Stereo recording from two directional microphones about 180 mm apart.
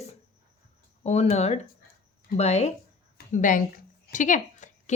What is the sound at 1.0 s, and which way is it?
A woman's voice, 35° left (ahead or behind).